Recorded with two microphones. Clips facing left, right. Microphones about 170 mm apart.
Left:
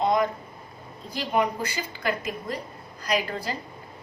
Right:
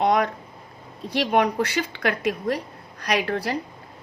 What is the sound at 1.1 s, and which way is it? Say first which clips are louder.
A woman's voice: right 5 dB; 75° right (ahead or behind).